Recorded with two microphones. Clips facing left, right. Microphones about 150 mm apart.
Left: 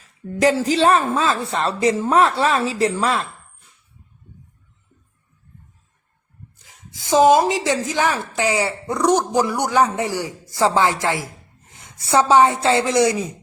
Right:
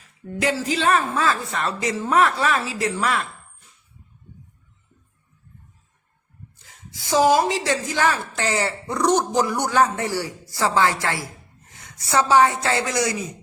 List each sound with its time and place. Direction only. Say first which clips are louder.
0.6 s a woman's voice: left 4 dB; 35° left (ahead or behind)
6.9 s a woman's voice: left 4 dB; 20° left (ahead or behind)